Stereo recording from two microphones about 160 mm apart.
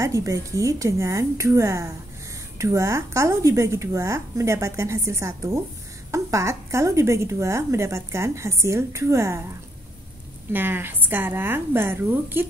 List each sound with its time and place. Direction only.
0.0 s a woman's voice: 20° right (ahead or behind)
10.5 s a woman's voice: 15° right (ahead or behind)